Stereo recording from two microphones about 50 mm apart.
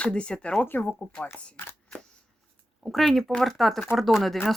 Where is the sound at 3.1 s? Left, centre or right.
Centre.